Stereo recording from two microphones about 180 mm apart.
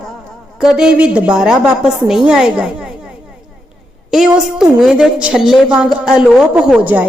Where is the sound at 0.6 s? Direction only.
5° right (ahead or behind).